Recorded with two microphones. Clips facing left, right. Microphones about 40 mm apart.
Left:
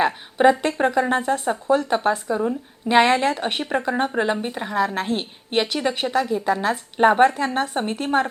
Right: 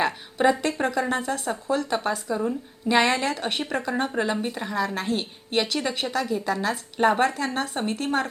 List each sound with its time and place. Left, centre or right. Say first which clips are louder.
0.0 s a woman's voice: left 5 dB; left